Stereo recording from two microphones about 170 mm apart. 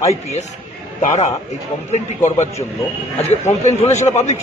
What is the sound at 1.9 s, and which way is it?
Speech, 40° left (ahead or behind).